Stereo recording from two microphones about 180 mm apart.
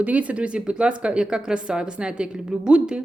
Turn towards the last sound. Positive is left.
turn(degrees=-5)  # may be behind; listen again after turning